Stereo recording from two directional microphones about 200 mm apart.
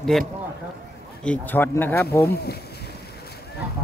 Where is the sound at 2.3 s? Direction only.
55° left (ahead or behind).